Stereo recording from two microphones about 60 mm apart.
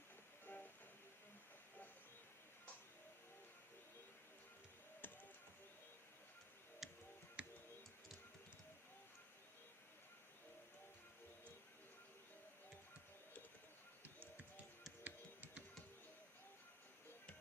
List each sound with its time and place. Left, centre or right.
0.4 s music: left
5.0 s music: left
6.8 s tick-tock: centre
7.4 s tick-tock: centre
15.0 s music: right